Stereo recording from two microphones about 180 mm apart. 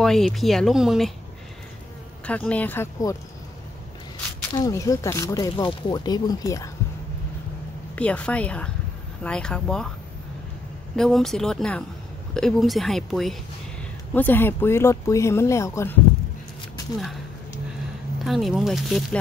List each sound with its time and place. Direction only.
0.0 s speech: centre (ahead or behind)
2.2 s speech: 5° left (ahead or behind)
4.6 s speech: 20° left (ahead or behind)
7.9 s speech: 5° left (ahead or behind)
11.0 s speech: centre (ahead or behind)
18.2 s speech: centre (ahead or behind)